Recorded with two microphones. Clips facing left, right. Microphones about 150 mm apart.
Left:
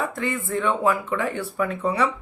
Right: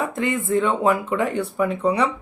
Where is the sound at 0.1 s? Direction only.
20° right (ahead or behind).